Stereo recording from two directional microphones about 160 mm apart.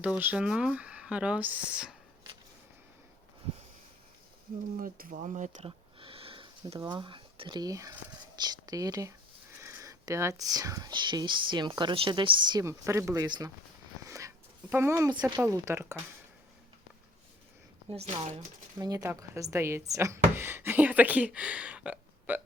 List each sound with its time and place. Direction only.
0.0 s speech: 10° right (ahead or behind)
4.8 s speech: 60° right (ahead or behind)
5.6 s a sound: 35° right (ahead or behind)
8.4 s speech: 25° right (ahead or behind)
14.1 s a sound: 20° right (ahead or behind)
15.4 s speech: 20° right (ahead or behind)
17.8 s speech: 40° right (ahead or behind)
18.8 s speech: 25° right (ahead or behind)